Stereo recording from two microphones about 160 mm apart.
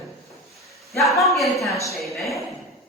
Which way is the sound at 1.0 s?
Centre (ahead or behind).